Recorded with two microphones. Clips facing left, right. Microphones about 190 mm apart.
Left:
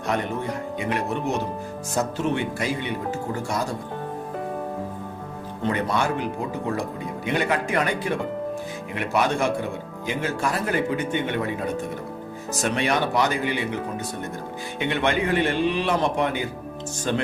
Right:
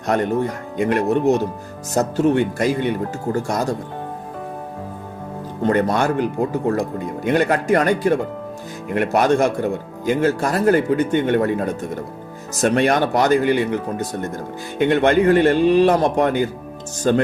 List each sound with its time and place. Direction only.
0.8 s speech: 50° right (ahead or behind)
5.6 s speech: 45° right (ahead or behind)